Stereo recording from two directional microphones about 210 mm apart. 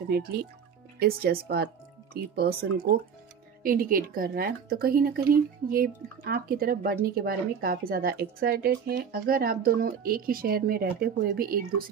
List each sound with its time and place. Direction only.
0.9 s speech: 45° right (ahead or behind)